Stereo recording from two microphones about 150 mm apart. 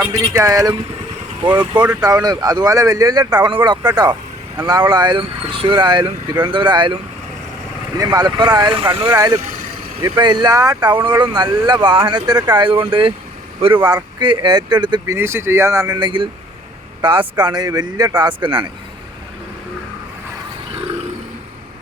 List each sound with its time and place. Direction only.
0.1 s speech: 20° right (ahead or behind)
15.1 s speech: 15° right (ahead or behind); by 18.7 s 30° right (ahead or behind)